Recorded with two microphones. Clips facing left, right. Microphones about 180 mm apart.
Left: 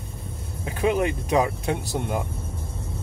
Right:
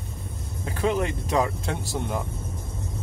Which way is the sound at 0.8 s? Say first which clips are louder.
Left 2 dB; 15° left (ahead or behind).